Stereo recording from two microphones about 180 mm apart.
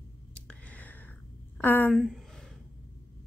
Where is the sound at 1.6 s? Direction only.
10° left (ahead or behind).